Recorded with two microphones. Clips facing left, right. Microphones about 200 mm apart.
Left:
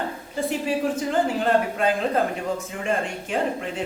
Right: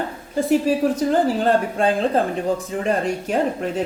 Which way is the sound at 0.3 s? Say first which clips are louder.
Right 7 dB; 40° right (ahead or behind).